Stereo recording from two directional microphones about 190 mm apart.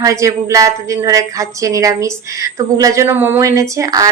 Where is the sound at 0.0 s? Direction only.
15° right (ahead or behind).